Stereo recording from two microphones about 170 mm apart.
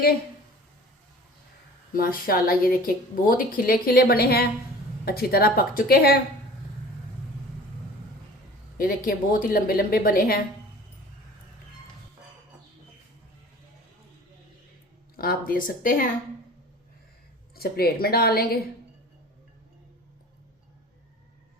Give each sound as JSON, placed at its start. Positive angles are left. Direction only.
{"t": 1.9, "sound": "speech", "side_deg": 60}
{"t": 8.8, "sound": "speech", "side_deg": 55}
{"t": 15.1, "sound": "speech", "side_deg": 60}
{"t": 17.5, "sound": "speech", "side_deg": 65}